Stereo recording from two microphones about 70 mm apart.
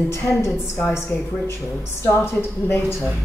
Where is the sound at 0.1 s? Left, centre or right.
Left.